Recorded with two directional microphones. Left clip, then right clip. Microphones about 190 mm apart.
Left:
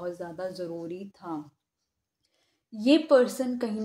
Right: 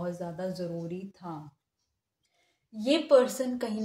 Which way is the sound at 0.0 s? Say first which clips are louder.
Left 1 dB; 40° left (ahead or behind).